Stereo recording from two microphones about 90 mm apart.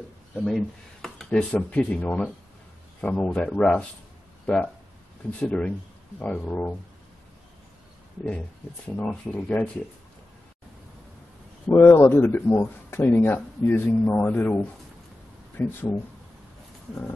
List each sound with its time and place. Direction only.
0.5 s speech: 5° left (ahead or behind)
1.5 s speech: 15° left (ahead or behind)
5.4 s speech: 15° left (ahead or behind)
8.3 s speech: 15° left (ahead or behind)
11.7 s speech: 25° left (ahead or behind)